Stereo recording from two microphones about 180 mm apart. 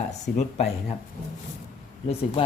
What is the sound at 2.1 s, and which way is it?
Speech, 30° left (ahead or behind).